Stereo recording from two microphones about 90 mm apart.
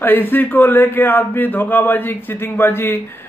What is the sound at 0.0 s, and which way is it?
Speech, 20° left (ahead or behind).